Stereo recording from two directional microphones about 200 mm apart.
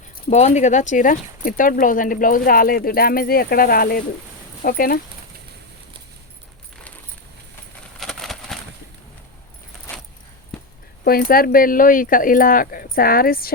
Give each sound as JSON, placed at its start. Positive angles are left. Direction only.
{"t": 0.3, "sound": "speech", "side_deg": 35}
{"t": 7.9, "sound": "a sound", "side_deg": 0}
{"t": 11.0, "sound": "speech", "side_deg": 45}